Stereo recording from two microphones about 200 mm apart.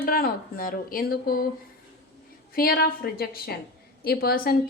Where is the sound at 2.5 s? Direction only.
45° left (ahead or behind).